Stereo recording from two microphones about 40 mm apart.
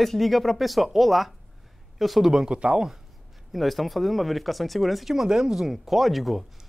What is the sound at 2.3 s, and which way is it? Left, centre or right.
Speech, right.